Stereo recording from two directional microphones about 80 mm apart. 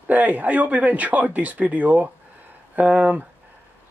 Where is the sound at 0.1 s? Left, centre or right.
Right.